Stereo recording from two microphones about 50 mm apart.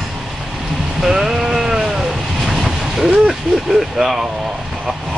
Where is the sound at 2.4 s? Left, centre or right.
Centre.